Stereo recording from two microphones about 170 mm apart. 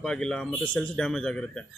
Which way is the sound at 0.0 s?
5° left (ahead or behind).